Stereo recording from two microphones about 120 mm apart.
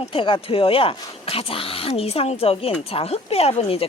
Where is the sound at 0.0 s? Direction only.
50° left (ahead or behind).